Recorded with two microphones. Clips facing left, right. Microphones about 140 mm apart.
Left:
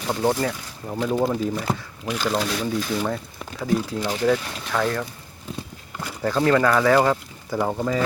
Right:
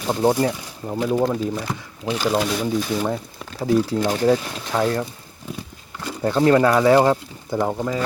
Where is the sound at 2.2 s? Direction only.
10° right (ahead or behind).